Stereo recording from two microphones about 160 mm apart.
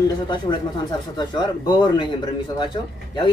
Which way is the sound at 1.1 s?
25° left (ahead or behind).